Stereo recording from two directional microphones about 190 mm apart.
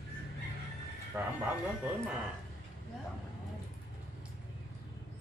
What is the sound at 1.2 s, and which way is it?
Speech, 10° right (ahead or behind).